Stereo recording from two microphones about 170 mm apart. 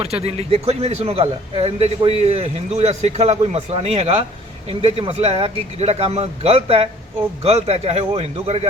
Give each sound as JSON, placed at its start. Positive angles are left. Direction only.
{"t": 0.0, "sound": "speech", "side_deg": -35}